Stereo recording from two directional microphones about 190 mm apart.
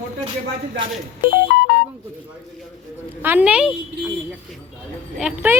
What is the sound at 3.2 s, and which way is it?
Speech, 10° right (ahead or behind).